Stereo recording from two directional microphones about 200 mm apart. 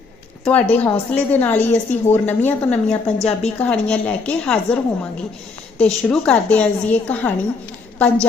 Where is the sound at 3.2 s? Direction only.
30° left (ahead or behind).